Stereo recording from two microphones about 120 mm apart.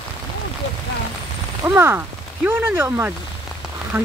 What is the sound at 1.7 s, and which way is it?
Speech, 20° right (ahead or behind).